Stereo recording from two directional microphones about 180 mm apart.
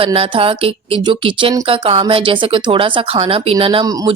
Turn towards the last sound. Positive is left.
turn(degrees=-25)  # may be behind; listen again after turning